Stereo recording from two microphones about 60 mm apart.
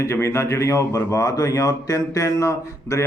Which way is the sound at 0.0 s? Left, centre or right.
Left.